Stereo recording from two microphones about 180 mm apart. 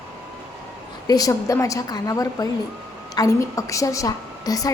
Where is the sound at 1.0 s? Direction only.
20° left (ahead or behind).